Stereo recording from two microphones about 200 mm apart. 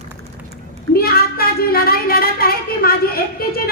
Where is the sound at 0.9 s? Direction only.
50° left (ahead or behind).